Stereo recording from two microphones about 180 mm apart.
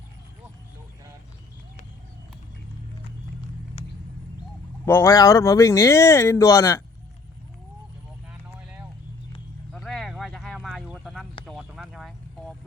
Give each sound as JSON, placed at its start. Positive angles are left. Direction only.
{"t": 4.9, "sound": "speech", "side_deg": 15}
{"t": 8.3, "sound": "vehicle", "side_deg": -10}
{"t": 9.7, "sound": "a sound", "side_deg": 0}
{"t": 11.4, "sound": "vehicle", "side_deg": 0}